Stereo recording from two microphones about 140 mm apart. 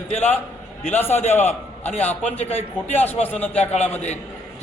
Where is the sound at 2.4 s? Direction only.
50° left (ahead or behind).